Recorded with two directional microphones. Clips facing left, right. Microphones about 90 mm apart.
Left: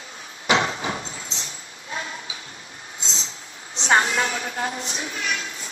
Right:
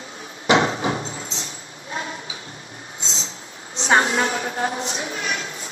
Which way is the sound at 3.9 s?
35° right (ahead or behind).